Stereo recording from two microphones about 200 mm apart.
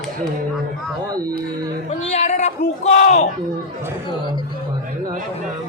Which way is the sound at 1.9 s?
35° left (ahead or behind).